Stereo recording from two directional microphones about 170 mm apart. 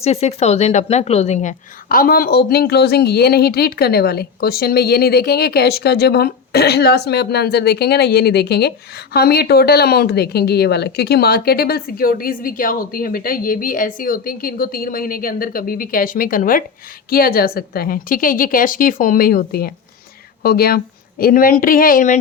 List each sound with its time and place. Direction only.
0.0 s a woman's voice: 40° left (ahead or behind)